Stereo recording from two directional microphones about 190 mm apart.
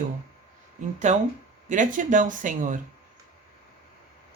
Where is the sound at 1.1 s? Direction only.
40° right (ahead or behind).